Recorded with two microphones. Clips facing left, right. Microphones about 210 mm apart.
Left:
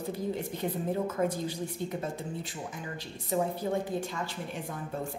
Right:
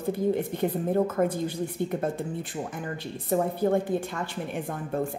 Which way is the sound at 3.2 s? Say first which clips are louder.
Right 5 dB; 55° right (ahead or behind).